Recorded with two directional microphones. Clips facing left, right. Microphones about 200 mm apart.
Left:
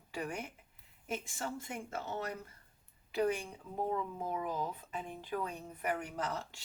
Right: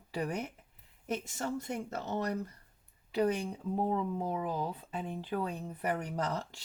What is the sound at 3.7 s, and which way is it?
Speech, 30° right (ahead or behind).